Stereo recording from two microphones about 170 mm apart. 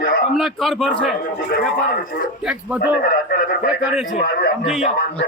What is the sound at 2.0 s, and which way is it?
Speech, 55° left (ahead or behind).